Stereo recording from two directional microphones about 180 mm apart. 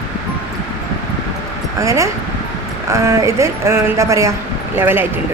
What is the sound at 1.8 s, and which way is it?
A woman's voice, 15° right (ahead or behind).